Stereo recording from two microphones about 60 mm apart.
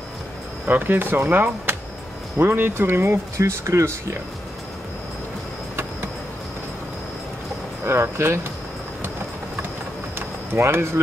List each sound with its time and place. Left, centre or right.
0.7 s speech: right
7.8 s speech: right
10.1 s a sound: right